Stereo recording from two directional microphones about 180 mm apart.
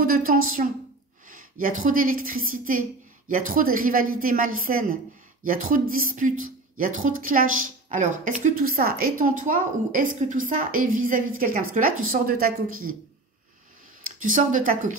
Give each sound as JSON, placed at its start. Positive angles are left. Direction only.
{"t": 0.0, "sound": "speech", "side_deg": -50}
{"t": 14.2, "sound": "speech", "side_deg": -50}